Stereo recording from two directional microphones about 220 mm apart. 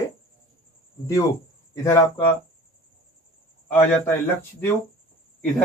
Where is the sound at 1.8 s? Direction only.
15° left (ahead or behind).